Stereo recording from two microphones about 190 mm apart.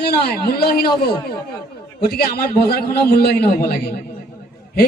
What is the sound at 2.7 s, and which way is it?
A man's voice, 55° left (ahead or behind).